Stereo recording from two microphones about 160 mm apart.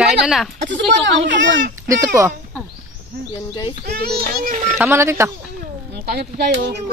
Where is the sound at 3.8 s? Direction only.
75° right (ahead or behind).